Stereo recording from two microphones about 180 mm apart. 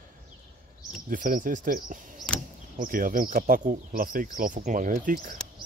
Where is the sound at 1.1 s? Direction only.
50° right (ahead or behind).